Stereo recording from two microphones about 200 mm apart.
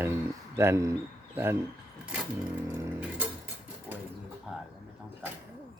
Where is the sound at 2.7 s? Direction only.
10° right (ahead or behind).